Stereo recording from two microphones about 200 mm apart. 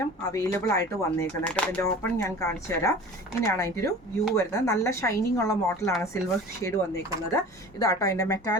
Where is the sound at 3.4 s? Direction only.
15° left (ahead or behind).